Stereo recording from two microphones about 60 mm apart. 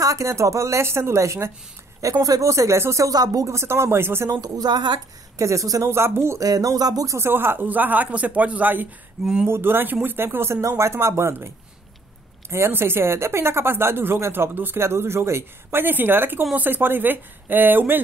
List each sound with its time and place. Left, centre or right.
0.0 s speech: right
2.2 s speech: right
3.1 s speech: right
3.5 s a woman's voice: right
5.4 s speech: right
5.9 s a woman's voice: right
6.4 s music: right
7.2 s speech: right
9.2 s speech: centre
9.5 s speech: right
10.6 s a woman's voice: right
12.4 s a woman's voice: right